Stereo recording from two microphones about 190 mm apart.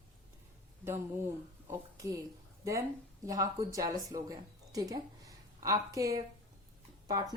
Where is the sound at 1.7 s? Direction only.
15° right (ahead or behind).